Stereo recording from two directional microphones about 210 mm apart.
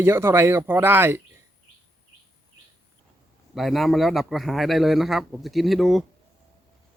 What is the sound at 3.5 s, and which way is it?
Speech, centre (ahead or behind).